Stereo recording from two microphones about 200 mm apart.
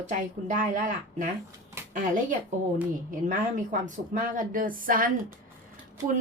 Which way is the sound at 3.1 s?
40° right (ahead or behind).